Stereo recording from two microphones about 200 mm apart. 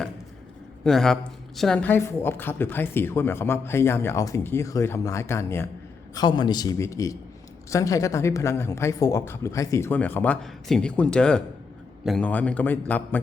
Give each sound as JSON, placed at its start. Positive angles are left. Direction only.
{"t": 0.9, "sound": "a man's voice", "side_deg": 0}